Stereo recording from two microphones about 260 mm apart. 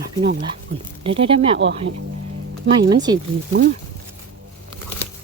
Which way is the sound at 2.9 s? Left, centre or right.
Centre.